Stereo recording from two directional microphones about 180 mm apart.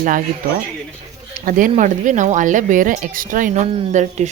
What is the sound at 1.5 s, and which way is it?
Speech, 50° right (ahead or behind).